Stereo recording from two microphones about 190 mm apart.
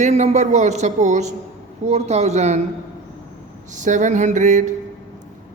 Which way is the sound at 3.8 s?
40° right (ahead or behind).